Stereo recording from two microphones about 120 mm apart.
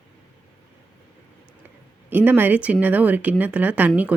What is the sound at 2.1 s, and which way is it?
Speech, 15° right (ahead or behind).